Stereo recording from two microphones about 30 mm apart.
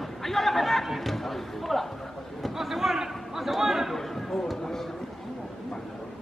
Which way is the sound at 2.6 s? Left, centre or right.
Centre.